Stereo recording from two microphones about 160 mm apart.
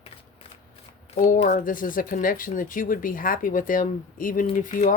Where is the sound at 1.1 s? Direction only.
45° left (ahead or behind).